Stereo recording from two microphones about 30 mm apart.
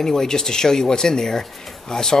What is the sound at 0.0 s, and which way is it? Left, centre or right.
Speech, centre.